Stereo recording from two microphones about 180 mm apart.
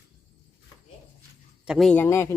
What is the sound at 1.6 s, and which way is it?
Speech, centre (ahead or behind).